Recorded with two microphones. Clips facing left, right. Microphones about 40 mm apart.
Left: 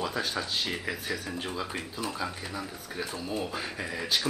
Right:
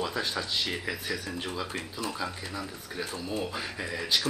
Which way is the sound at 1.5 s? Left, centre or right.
Centre.